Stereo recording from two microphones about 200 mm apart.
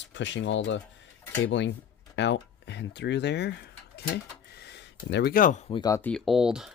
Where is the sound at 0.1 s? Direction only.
65° left (ahead or behind).